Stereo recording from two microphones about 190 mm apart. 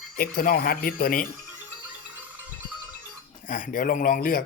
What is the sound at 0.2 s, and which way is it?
Speech, 50° left (ahead or behind).